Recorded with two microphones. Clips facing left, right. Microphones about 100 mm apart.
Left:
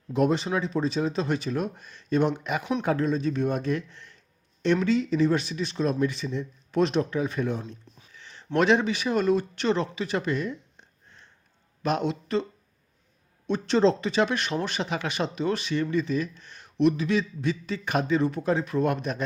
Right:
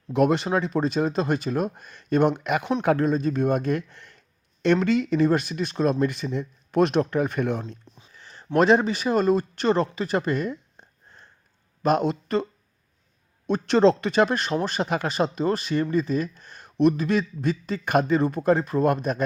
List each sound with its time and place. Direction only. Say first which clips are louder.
0.1 s speech: right 3 dB; 65° right (ahead or behind)
2.8 s speech: right 4 dB; 55° right (ahead or behind)
8.1 s a sound: right 1 dB; 40° right (ahead or behind)
8.5 s speech: right 3 dB; 40° right (ahead or behind)
13.5 s speech: right 3 dB; 55° right (ahead or behind)